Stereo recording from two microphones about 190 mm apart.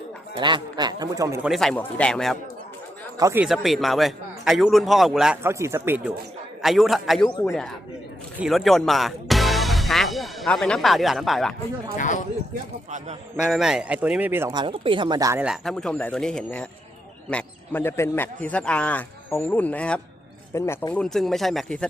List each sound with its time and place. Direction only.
0.3 s a man's voice: 25° right (ahead or behind)
1.4 s a man's voice: centre (ahead or behind)
3.2 s speech: 15° right (ahead or behind)
3.4 s a man's voice: centre (ahead or behind)
6.6 s a man's voice: centre (ahead or behind)
8.4 s speech: centre (ahead or behind)
11.9 s speech: 40° left (ahead or behind)
13.3 s a man's voice: centre (ahead or behind)
14.5 s a man's voice: 25° right (ahead or behind)
15.4 s a man's voice: centre (ahead or behind)